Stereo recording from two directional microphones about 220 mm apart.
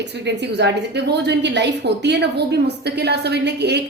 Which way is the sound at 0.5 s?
50° right (ahead or behind).